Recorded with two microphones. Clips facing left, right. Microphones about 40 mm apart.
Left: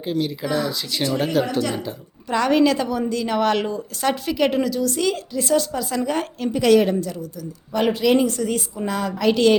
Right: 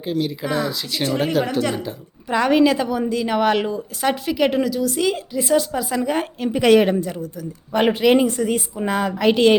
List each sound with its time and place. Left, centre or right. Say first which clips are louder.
0.0 s a woman's voice: right 1 dB; centre; by 9.6 s right